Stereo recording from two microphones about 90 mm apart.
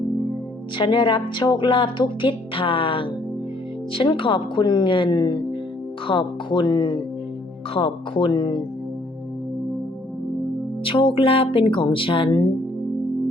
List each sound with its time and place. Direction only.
0.8 s a woman's voice: 65° left (ahead or behind)
6.1 s a woman's voice: 65° left (ahead or behind)
7.7 s speech: 85° left
8.3 s speech: 55° left (ahead or behind)
10.8 s speech: 75° left (ahead or behind)